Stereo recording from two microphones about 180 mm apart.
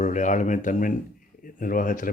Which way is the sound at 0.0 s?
45° left (ahead or behind).